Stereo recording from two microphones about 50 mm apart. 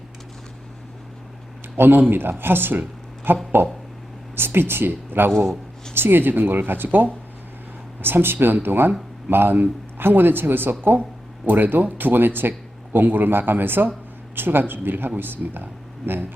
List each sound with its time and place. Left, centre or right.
1.7 s speech: right